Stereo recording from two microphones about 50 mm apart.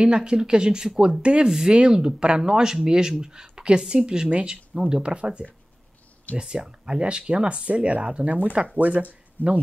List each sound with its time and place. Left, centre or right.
0.0 s speech: centre
9.4 s speech: left